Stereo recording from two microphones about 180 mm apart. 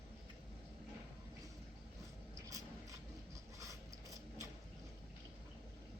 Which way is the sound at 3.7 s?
15° right (ahead or behind).